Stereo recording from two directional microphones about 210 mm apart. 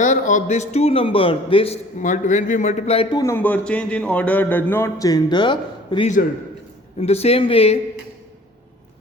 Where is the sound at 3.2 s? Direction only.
10° left (ahead or behind); by 7.8 s 30° left (ahead or behind).